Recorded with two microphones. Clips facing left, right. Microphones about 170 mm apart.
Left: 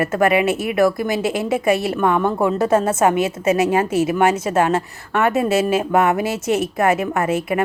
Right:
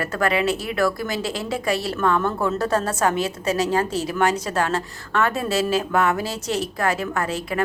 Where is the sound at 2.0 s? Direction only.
15° left (ahead or behind).